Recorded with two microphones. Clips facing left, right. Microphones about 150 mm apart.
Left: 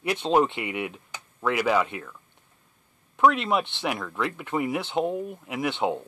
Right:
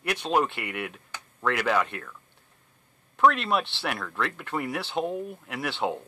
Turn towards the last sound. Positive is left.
turn(degrees=15)  # may be behind; listen again after turning